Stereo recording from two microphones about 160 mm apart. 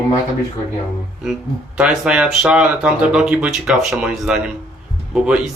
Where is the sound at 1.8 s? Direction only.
5° right (ahead or behind).